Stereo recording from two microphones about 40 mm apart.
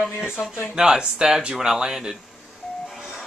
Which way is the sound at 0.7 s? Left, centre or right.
Centre.